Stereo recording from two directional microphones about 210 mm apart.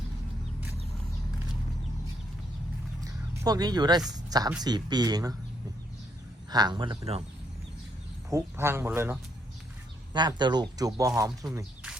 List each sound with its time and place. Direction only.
3.0 s a sound: 15° right (ahead or behind)
4.3 s speech: 20° right (ahead or behind)
6.5 s speech: 20° right (ahead or behind)
8.3 s speech: 10° right (ahead or behind)